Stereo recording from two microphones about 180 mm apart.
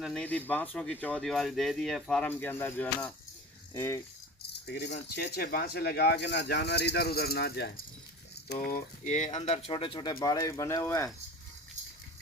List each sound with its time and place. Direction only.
0.0 s speech: 5° left (ahead or behind)
4.6 s speech: 60° left (ahead or behind)
4.9 s speech: 40° left (ahead or behind)
5.3 s speech: 55° left (ahead or behind)
8.4 s speech: 55° left (ahead or behind); by 11.1 s 15° left (ahead or behind)